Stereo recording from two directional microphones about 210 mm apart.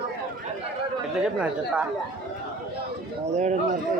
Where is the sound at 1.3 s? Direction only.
5° right (ahead or behind).